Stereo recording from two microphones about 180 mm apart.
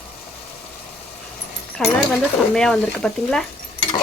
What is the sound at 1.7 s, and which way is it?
Speech, 5° left (ahead or behind).